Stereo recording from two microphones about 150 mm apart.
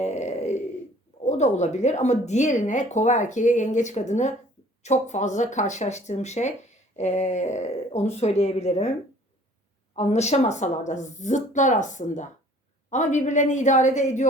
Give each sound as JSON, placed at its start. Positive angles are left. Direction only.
{"t": 0.0, "sound": "a sound", "side_deg": 50}
{"t": 1.2, "sound": "speech", "side_deg": 50}
{"t": 9.9, "sound": "speech", "side_deg": 50}